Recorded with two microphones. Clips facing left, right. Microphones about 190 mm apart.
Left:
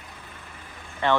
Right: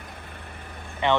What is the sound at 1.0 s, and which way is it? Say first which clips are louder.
Speech: even; 20° right (ahead or behind).